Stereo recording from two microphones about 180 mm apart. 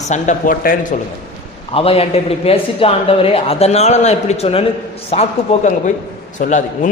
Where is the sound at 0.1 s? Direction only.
45° left (ahead or behind).